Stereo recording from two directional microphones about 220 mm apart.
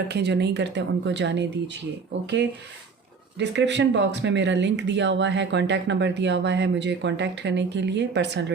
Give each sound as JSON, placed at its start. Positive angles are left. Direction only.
{"t": 0.1, "sound": "speech", "side_deg": -50}
{"t": 3.3, "sound": "speech", "side_deg": -55}